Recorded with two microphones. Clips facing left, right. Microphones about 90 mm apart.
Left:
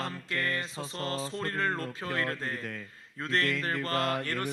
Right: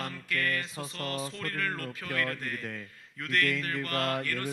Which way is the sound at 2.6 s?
Centre (ahead or behind).